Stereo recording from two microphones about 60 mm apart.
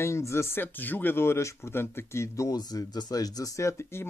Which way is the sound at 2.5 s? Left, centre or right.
Left.